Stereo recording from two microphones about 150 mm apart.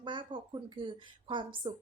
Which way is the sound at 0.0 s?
30° right (ahead or behind).